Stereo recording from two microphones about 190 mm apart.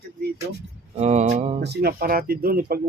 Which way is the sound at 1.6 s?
60° right (ahead or behind).